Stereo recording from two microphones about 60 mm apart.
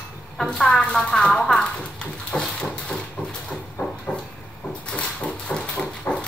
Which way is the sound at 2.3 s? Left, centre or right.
Centre.